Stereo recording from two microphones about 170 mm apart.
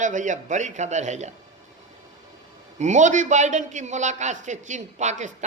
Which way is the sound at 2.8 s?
45° right (ahead or behind).